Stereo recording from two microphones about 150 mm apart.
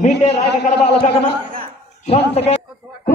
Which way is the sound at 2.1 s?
45° left (ahead or behind).